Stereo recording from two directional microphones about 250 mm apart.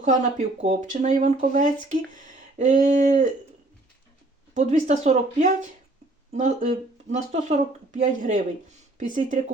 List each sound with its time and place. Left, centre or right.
0.0 s speech: right
4.5 s speech: right
7.9 s speech: right